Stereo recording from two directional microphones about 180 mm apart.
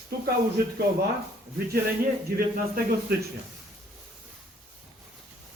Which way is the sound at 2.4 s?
55° right (ahead or behind).